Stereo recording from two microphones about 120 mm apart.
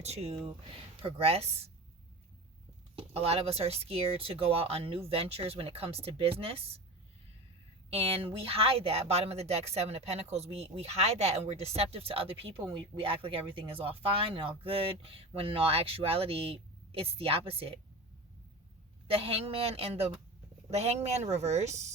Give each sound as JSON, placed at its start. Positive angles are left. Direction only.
{"t": 0.0, "sound": "speech", "side_deg": -60}
{"t": 2.9, "sound": "speech", "side_deg": -55}
{"t": 7.9, "sound": "speech", "side_deg": -55}
{"t": 19.0, "sound": "speech", "side_deg": -50}